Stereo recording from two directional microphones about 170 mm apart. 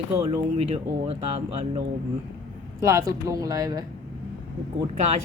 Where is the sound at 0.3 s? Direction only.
35° right (ahead or behind).